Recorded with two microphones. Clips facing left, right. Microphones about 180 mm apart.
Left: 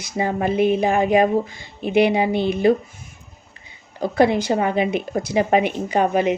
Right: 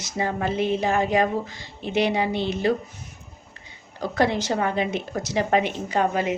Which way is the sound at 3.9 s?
10° left (ahead or behind).